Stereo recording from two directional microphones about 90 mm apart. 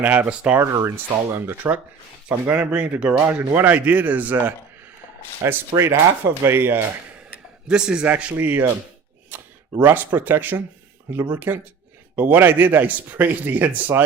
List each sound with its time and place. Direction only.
0.0 s a man's voice: 15° right (ahead or behind)
0.6 s a man's voice: 30° right (ahead or behind); by 3.2 s 15° right (ahead or behind)
3.2 s speech: 25° right (ahead or behind)
5.4 s speech: 30° right (ahead or behind)
7.7 s a man's voice: 10° right (ahead or behind)